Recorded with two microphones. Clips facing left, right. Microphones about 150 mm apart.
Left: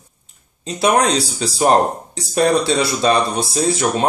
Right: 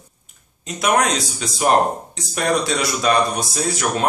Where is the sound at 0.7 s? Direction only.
30° left (ahead or behind).